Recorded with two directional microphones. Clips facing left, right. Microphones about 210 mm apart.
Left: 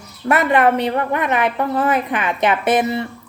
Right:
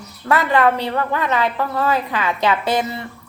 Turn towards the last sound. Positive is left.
turn(degrees=20)  # may be behind; listen again after turning